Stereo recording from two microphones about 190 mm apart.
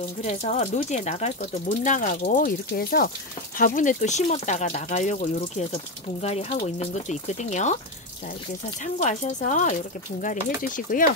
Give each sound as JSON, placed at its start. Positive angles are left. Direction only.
{"t": 0.2, "sound": "speech", "side_deg": 35}
{"t": 8.8, "sound": "speech", "side_deg": 40}